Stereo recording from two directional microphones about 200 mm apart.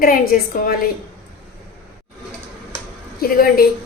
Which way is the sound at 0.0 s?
45° left (ahead or behind).